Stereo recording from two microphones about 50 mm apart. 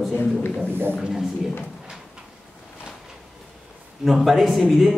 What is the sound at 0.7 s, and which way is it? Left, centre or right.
Speech, right.